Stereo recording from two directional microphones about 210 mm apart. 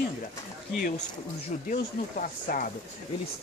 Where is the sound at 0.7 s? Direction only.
45° left (ahead or behind).